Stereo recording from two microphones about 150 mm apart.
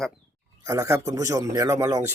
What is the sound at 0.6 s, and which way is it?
A man's voice, 20° right (ahead or behind).